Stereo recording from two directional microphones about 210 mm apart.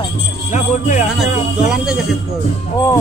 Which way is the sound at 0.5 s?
35° left (ahead or behind).